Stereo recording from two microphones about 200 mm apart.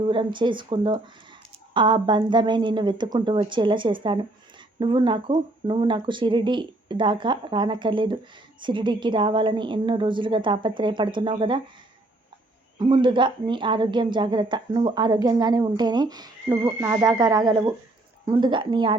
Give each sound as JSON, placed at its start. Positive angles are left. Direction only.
{"t": 0.0, "sound": "a woman's voice", "side_deg": -25}
{"t": 12.8, "sound": "a woman's voice", "side_deg": -25}